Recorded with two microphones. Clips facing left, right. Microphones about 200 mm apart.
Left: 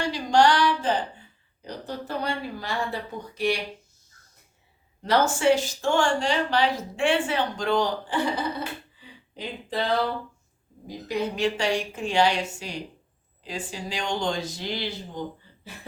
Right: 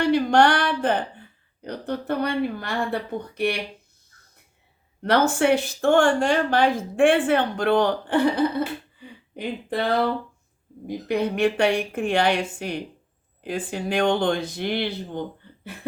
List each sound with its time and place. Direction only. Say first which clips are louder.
0.0 s speech: right 3 dB; 60° right (ahead or behind)
5.0 s a woman's voice: right 2 dB; 60° right (ahead or behind)
10.8 s a woman's voice: right 4 dB; 60° right (ahead or behind)